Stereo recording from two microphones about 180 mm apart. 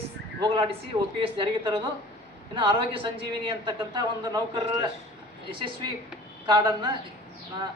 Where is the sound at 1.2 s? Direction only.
25° right (ahead or behind).